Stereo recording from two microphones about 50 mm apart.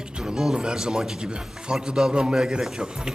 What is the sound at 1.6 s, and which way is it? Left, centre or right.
Speech, centre.